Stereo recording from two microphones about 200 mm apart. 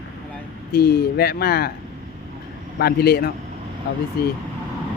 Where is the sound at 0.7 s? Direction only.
50° left (ahead or behind).